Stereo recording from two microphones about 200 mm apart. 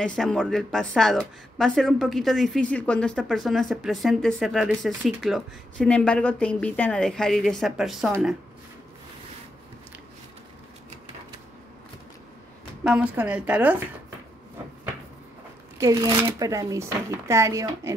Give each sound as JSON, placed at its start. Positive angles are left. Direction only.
{"t": 0.0, "sound": "speech", "side_deg": 5}
{"t": 12.8, "sound": "speech", "side_deg": -5}
{"t": 15.8, "sound": "speech", "side_deg": -15}